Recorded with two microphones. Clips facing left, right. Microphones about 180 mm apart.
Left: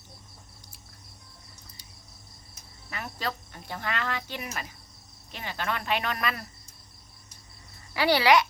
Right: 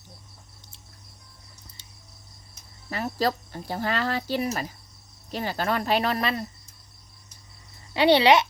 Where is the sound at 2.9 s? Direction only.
35° right (ahead or behind).